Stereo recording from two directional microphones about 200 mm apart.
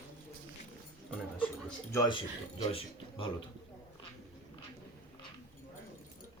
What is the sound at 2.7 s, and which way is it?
Speech, 25° left (ahead or behind).